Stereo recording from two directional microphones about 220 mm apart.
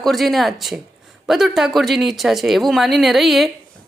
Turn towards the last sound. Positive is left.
turn(degrees=0)  # may be behind; listen again after turning